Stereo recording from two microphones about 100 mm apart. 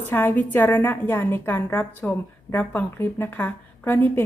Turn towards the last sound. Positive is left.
turn(degrees=20)  # may be behind; listen again after turning